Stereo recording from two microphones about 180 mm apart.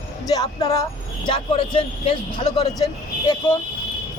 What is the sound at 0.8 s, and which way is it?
Speech, 25° left (ahead or behind).